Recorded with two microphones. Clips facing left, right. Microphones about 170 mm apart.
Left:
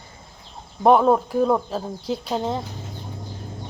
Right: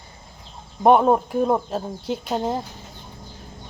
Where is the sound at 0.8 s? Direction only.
10° right (ahead or behind).